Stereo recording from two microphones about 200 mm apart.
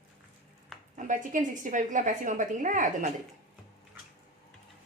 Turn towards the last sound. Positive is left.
turn(degrees=-40)  # may be behind; listen again after turning